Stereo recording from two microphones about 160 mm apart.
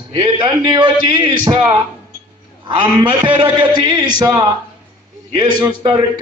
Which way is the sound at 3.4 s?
30° right (ahead or behind).